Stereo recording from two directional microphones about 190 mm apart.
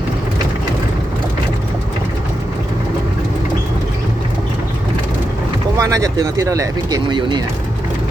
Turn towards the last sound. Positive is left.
turn(degrees=-25)  # may be behind; listen again after turning